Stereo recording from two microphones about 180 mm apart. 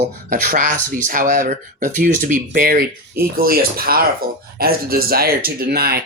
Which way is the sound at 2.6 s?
55° right (ahead or behind).